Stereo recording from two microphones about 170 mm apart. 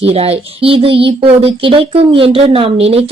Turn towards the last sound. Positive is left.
turn(degrees=-35)  # may be behind; listen again after turning